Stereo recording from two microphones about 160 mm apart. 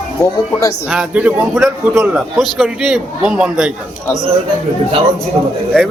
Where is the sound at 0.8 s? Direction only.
5° right (ahead or behind).